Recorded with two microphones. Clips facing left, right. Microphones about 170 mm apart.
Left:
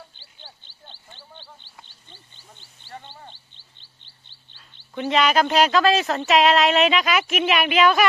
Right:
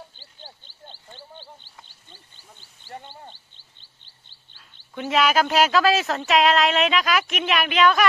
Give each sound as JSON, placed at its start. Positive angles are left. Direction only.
{"t": 0.2, "sound": "wild animals", "side_deg": -45}
{"t": 2.3, "sound": "a sound", "side_deg": -45}
{"t": 3.5, "sound": "chirp", "side_deg": -45}
{"t": 4.9, "sound": "speech", "side_deg": -5}